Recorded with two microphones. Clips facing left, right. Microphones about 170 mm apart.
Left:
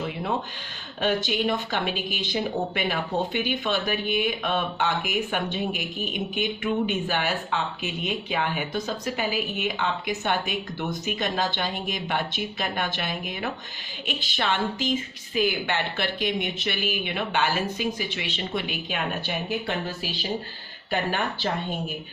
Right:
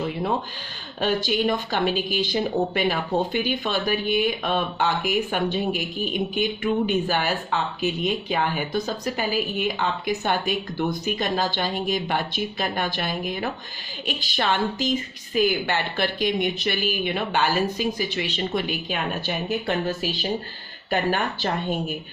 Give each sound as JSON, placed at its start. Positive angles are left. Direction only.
{"t": 1.0, "sound": "speech", "side_deg": -40}